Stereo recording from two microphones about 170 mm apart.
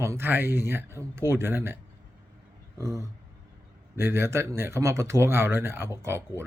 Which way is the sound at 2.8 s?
15° right (ahead or behind).